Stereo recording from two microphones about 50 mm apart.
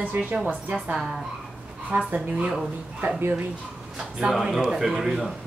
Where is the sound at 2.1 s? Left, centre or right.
Right.